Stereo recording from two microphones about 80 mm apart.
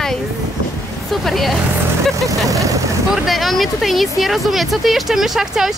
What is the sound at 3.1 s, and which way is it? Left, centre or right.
Speech, centre.